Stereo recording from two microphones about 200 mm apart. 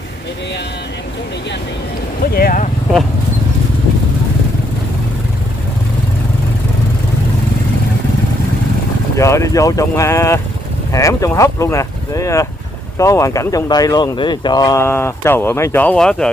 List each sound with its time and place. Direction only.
2.3 s speech: 45° left (ahead or behind)
9.1 s speech: 15° left (ahead or behind)